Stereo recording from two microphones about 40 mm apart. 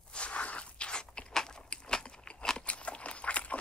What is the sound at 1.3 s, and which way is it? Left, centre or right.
Biting, centre.